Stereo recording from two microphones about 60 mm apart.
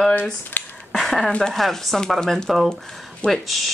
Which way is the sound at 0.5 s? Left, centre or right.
Left.